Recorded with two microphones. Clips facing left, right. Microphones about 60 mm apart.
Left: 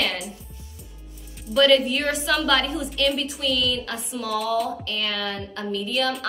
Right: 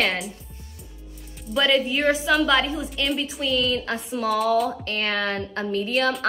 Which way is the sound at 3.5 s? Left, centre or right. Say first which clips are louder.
Right 2 dB; right.